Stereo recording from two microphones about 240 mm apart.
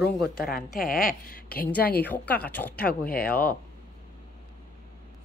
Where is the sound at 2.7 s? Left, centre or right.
Left.